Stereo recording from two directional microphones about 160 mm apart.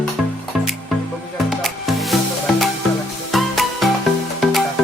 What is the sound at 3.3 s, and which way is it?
Music, centre (ahead or behind).